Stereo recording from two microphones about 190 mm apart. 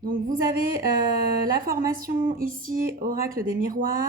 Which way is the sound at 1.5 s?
50° right (ahead or behind).